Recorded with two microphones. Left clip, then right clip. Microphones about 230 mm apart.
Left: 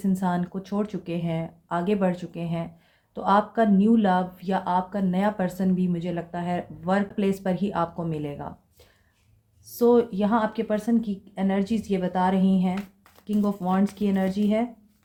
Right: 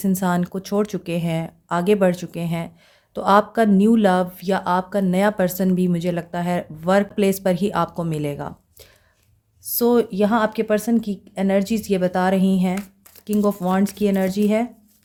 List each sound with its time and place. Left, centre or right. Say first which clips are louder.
0.0 s speech: right 5 dB; right